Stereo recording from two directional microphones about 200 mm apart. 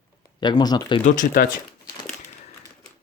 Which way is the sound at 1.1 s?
40° left (ahead or behind).